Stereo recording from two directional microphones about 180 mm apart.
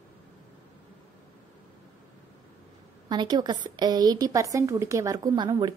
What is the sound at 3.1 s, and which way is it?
A woman's voice, 25° right (ahead or behind).